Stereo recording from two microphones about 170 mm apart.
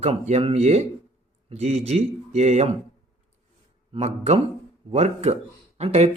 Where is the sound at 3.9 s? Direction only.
40° right (ahead or behind).